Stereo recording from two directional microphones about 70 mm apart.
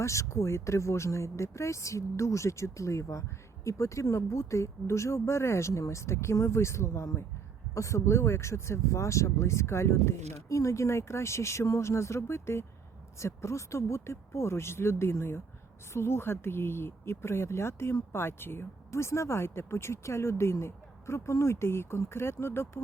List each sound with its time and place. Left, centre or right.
0.0 s speech: left